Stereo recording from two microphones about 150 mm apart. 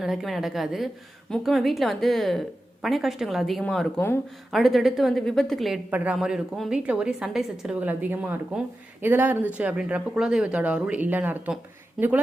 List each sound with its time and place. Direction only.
0.0 s a woman's voice: centre (ahead or behind)